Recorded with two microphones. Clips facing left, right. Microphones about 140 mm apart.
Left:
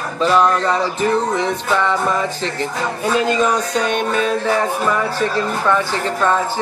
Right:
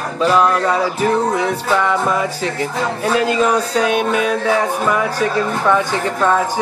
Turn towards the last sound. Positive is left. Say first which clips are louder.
# right 2 dB
turn(degrees=-10)  # may be behind; listen again after turning